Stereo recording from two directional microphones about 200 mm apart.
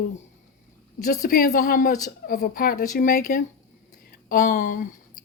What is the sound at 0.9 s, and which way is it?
A woman's voice, 50° left (ahead or behind).